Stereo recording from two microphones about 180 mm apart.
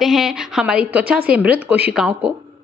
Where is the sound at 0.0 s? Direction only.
Centre (ahead or behind).